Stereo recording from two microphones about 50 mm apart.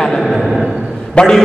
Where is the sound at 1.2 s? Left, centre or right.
Left.